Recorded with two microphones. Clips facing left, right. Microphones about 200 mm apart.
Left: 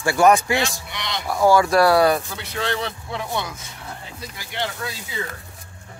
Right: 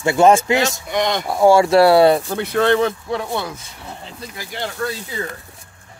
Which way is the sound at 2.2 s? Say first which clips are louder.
Right 10 dB; 55° right (ahead or behind).